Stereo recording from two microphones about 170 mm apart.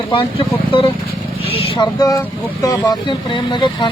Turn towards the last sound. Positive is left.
turn(degrees=25)  # may be behind; listen again after turning